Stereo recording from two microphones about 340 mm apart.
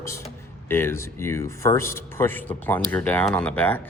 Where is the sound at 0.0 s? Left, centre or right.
Centre.